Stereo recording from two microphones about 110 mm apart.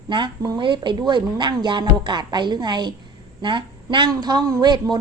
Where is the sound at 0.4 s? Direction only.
45° right (ahead or behind).